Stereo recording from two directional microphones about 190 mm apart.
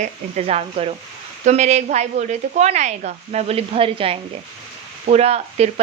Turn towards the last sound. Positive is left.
turn(degrees=-35)  # may be behind; listen again after turning